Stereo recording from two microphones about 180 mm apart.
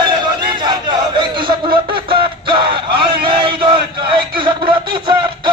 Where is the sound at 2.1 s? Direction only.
30° right (ahead or behind).